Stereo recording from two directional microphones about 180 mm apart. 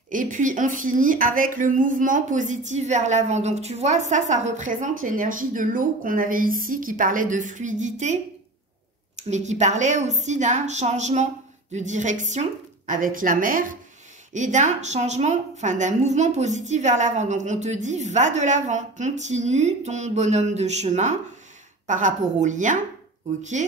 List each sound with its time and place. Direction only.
0.1 s a woman's voice: 45° right (ahead or behind)